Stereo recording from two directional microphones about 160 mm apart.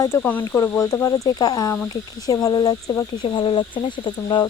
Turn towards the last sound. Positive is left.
turn(degrees=30)  # may be behind; listen again after turning